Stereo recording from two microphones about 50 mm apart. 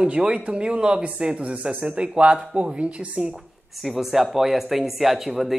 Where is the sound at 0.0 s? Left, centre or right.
Right.